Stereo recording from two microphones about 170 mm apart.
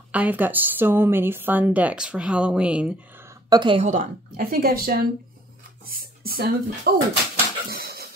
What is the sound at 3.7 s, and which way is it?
Speech, 45° right (ahead or behind).